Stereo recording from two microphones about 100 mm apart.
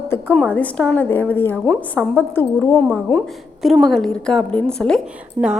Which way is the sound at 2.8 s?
Centre (ahead or behind).